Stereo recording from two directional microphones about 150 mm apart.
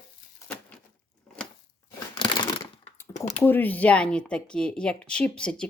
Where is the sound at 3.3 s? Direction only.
15° left (ahead or behind).